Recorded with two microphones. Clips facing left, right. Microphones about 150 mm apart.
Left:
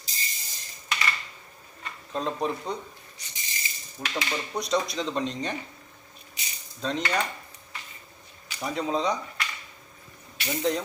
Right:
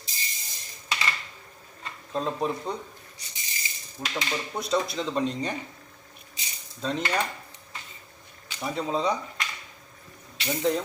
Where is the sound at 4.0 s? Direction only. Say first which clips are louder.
Even; centre (ahead or behind).